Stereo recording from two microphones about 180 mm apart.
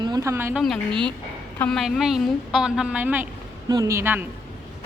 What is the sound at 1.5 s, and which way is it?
A woman's voice, 5° left (ahead or behind).